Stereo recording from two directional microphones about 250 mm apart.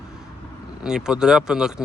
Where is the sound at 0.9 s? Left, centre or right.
Centre.